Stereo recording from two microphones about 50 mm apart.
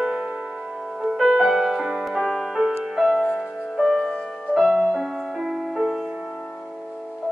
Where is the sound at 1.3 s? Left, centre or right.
Centre.